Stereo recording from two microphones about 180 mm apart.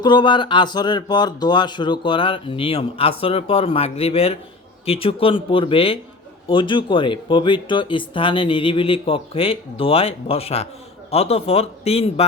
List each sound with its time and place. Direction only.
0.0 s speech: 25° left (ahead or behind)